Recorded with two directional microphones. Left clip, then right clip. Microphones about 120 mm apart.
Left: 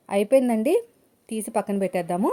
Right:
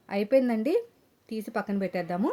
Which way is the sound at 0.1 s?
40° left (ahead or behind).